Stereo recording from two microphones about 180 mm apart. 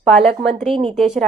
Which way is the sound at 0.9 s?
Centre (ahead or behind).